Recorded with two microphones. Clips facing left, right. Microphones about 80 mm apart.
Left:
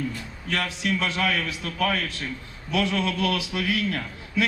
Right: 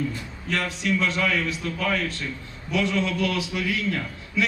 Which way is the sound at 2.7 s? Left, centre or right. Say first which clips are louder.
Right 1 dB; right.